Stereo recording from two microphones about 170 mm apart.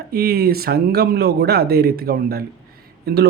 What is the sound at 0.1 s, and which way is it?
Speech, 65° right (ahead or behind).